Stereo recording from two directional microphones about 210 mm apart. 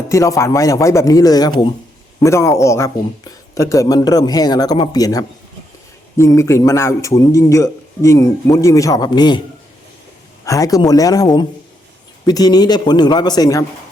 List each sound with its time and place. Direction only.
0.1 s a man's voice: 15° left (ahead or behind)
10.4 s a man's voice: 15° left (ahead or behind)